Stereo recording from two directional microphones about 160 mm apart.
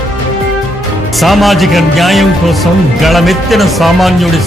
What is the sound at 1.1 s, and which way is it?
Speech, centre (ahead or behind).